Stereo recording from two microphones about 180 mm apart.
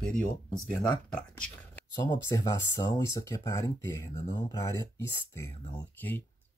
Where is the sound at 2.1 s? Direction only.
15° left (ahead or behind).